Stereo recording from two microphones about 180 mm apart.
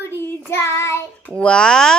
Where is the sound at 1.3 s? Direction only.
5° left (ahead or behind).